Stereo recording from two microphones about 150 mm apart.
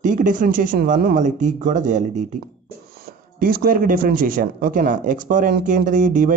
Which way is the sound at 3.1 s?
75° right (ahead or behind).